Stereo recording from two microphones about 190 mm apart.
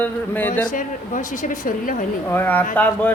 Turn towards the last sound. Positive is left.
turn(degrees=10)  # may be behind; listen again after turning